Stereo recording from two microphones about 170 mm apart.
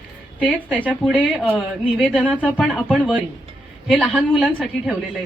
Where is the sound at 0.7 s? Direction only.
10° right (ahead or behind).